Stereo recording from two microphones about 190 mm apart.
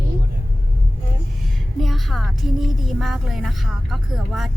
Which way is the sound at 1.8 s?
Centre (ahead or behind).